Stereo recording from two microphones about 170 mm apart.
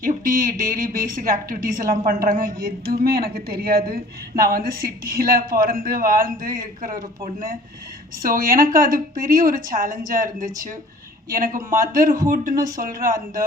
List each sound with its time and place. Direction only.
0.0 s a sound: 55° right (ahead or behind)
0.6 s a woman's voice: 55° right (ahead or behind)
8.2 s speech: 55° right (ahead or behind)